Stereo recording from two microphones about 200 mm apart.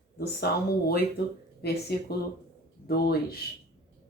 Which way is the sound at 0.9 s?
55° left (ahead or behind).